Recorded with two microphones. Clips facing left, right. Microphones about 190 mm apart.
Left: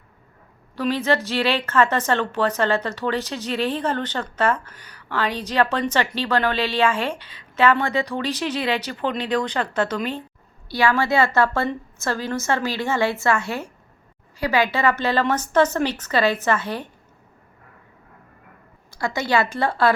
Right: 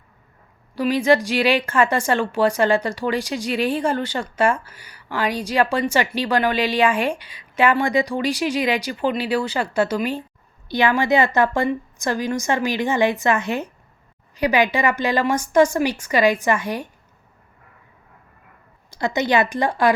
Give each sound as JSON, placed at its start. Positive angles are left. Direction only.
{"t": 0.8, "sound": "a woman's voice", "side_deg": -15}
{"t": 18.9, "sound": "a woman's voice", "side_deg": -20}